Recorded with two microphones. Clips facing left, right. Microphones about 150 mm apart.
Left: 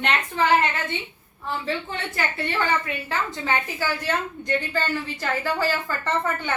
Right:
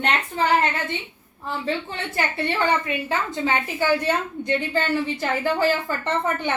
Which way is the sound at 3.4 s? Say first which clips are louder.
Right 6 dB; 20° right (ahead or behind).